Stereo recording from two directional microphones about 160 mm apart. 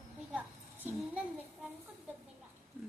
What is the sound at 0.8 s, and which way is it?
Child singing, 10° right (ahead or behind).